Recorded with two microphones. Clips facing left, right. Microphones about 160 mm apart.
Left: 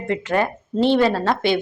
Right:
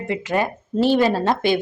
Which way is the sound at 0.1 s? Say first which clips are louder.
Left 1 dB; 15° right (ahead or behind).